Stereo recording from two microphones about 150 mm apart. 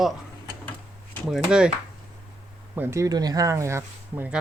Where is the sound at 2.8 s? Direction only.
20° right (ahead or behind).